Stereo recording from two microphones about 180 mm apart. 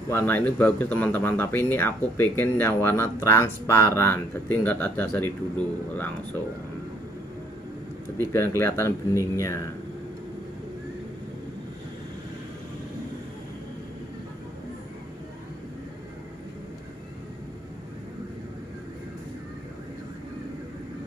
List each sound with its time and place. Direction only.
0.1 s speech: 10° left (ahead or behind)
8.2 s speech: 15° left (ahead or behind)